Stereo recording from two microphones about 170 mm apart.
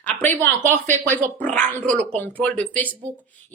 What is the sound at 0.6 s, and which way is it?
Speech, 45° right (ahead or behind).